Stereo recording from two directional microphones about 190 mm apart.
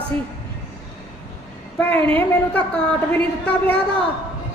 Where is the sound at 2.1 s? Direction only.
10° left (ahead or behind).